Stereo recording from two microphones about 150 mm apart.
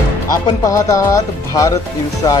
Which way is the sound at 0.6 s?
20° left (ahead or behind).